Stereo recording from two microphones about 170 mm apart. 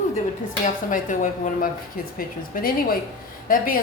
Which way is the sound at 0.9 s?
50° left (ahead or behind).